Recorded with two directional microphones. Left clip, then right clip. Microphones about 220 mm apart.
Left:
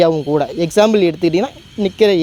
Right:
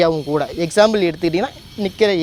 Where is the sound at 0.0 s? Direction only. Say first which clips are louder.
Left 3 dB; 45° left (ahead or behind).